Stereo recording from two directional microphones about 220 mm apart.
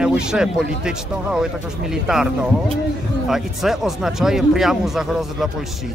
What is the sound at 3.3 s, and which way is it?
Speech, centre (ahead or behind).